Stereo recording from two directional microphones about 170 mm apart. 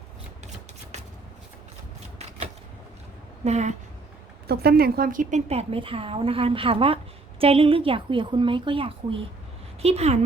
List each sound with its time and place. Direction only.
3.4 s a woman's voice: 40° right (ahead or behind)
4.4 s a woman's voice: 65° right (ahead or behind); by 10.2 s 40° right (ahead or behind)